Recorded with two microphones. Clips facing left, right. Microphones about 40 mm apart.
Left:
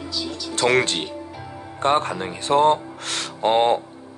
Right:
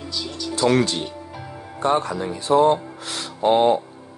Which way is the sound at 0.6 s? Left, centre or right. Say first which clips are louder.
Even; left.